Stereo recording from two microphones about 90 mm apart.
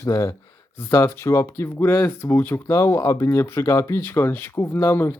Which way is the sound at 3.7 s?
45° left (ahead or behind).